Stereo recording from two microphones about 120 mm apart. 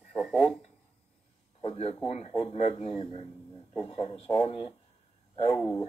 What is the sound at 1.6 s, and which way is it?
Speech, 55° left (ahead or behind).